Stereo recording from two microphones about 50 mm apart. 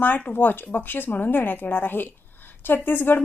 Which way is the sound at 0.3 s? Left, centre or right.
Left.